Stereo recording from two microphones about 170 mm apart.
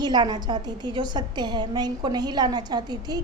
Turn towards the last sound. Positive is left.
turn(degrees=-25)  # may be behind; listen again after turning